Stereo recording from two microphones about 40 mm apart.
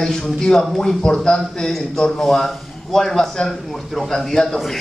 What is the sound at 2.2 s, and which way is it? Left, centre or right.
A man's voice, centre.